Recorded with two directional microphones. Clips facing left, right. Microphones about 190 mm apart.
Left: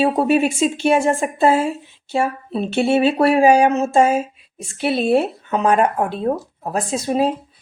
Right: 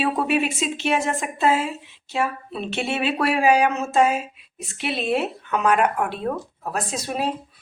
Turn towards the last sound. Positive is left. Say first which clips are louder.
# left 7 dB
turn(degrees=35)  # may be behind; listen again after turning